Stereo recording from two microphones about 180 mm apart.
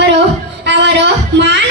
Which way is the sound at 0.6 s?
75° right (ahead or behind).